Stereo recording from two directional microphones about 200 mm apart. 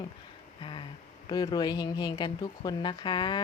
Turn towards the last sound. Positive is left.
turn(degrees=25)  # may be behind; listen again after turning